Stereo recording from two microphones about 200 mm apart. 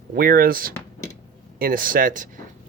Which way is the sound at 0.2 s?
45° right (ahead or behind).